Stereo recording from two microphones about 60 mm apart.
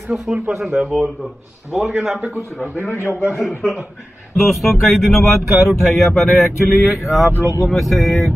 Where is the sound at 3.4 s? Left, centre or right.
Centre.